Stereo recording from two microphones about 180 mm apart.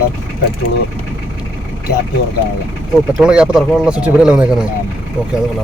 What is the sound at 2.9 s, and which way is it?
A man's voice, 5° right (ahead or behind).